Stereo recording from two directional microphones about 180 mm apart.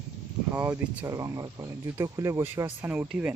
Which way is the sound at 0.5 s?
10° right (ahead or behind).